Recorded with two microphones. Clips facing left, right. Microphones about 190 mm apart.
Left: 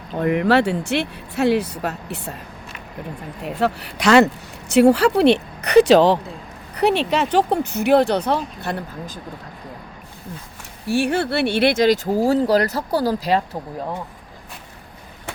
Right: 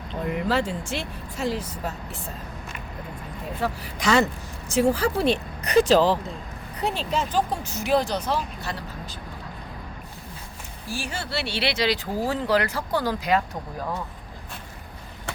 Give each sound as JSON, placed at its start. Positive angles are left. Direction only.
{"t": 0.2, "sound": "speech", "side_deg": 70}
{"t": 3.4, "sound": "speech", "side_deg": 70}
{"t": 10.8, "sound": "speech", "side_deg": 65}